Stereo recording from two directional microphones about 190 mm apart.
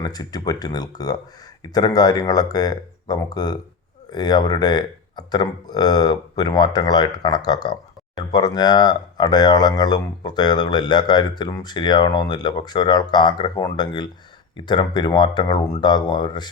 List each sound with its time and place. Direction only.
0.0 s speech: 20° left (ahead or behind)